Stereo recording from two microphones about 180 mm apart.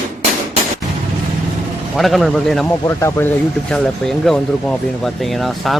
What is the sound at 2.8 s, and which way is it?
Speech, 15° left (ahead or behind).